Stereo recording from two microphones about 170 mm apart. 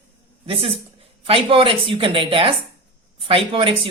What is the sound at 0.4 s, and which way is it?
Speech, 35° right (ahead or behind).